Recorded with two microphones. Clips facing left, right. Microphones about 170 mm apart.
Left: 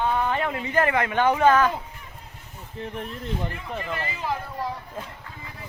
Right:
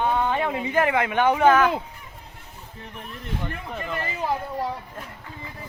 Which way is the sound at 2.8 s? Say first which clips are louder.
Left 9 dB; 30° left (ahead or behind).